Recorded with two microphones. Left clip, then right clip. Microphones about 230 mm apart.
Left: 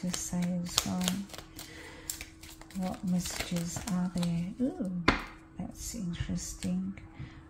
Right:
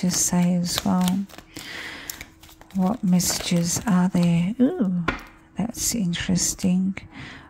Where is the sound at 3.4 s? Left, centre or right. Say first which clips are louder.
Right 13 dB; right.